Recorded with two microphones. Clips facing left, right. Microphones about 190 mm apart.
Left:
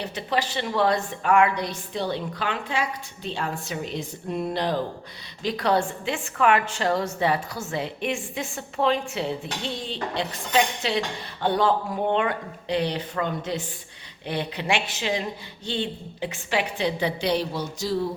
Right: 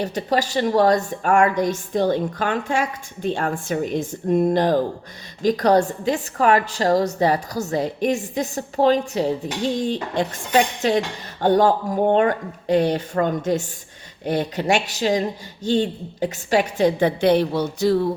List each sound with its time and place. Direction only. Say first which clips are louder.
0.0 s a woman's voice: right 5 dB; 40° right (ahead or behind); by 18.0 s 60° right (ahead or behind)